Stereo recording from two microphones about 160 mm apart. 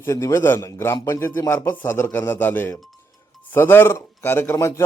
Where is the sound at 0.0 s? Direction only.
20° left (ahead or behind).